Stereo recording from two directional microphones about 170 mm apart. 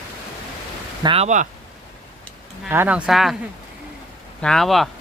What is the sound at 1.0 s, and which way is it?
Speech, 35° right (ahead or behind).